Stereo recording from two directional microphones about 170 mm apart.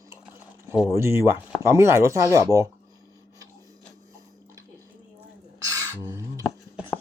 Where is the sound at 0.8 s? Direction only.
15° right (ahead or behind).